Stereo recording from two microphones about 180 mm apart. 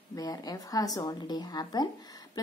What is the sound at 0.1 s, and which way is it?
A woman's voice, 20° left (ahead or behind).